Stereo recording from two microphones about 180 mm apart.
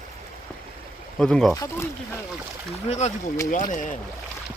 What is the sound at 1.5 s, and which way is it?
Speech, 20° left (ahead or behind).